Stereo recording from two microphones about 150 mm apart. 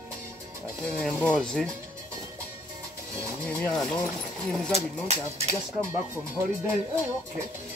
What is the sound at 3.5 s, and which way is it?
Speech, 5° left (ahead or behind).